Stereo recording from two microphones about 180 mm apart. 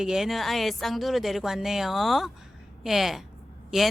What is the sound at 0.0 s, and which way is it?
A woman's voice, centre (ahead or behind).